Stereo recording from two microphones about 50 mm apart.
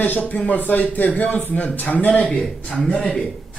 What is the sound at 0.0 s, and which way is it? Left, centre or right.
A man's voice, left.